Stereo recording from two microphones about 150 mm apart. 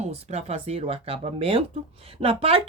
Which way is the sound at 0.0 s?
45° right (ahead or behind).